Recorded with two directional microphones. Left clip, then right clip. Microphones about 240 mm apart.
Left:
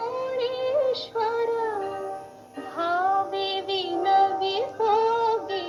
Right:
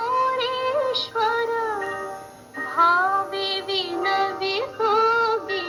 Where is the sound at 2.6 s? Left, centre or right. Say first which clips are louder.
Right 6 dB; centre.